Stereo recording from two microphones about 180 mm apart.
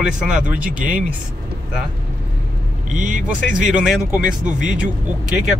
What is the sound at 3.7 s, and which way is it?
Speech, 5° right (ahead or behind).